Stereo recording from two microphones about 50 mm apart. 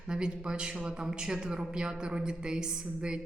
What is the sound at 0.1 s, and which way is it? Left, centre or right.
A woman's voice, centre.